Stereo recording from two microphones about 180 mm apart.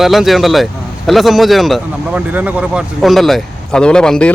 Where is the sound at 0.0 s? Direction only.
Centre (ahead or behind).